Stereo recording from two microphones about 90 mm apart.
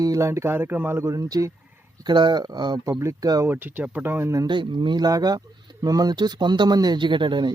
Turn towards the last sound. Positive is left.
turn(degrees=-60)  # may be behind; listen again after turning